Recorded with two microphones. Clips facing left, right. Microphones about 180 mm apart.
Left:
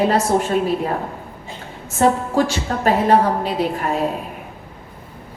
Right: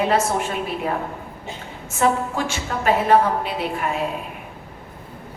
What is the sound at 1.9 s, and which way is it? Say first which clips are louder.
A woman's voice: left 4 dB; 35° left (ahead or behind).